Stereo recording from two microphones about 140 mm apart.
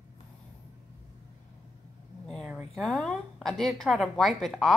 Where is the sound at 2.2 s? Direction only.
5° left (ahead or behind).